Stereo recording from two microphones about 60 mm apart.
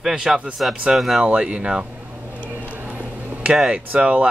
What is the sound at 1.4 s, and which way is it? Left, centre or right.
Speech, centre.